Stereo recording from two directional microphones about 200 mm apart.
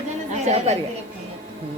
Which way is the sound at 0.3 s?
35° right (ahead or behind).